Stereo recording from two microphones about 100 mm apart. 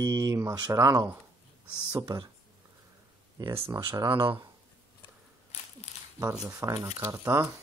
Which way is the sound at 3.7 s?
40° right (ahead or behind).